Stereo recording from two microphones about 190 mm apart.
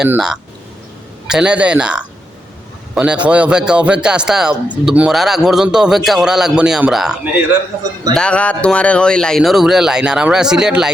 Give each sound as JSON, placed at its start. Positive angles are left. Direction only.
{"t": 0.0, "sound": "speech", "side_deg": -5}